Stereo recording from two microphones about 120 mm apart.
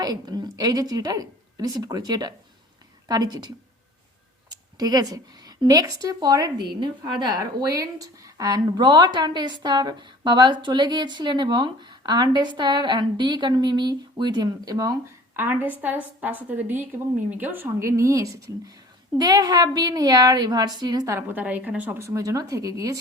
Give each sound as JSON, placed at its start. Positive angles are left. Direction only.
{"t": 0.0, "sound": "a woman's voice", "side_deg": -35}
{"t": 4.8, "sound": "a woman's voice", "side_deg": -30}
{"t": 15.4, "sound": "a woman's voice", "side_deg": -15}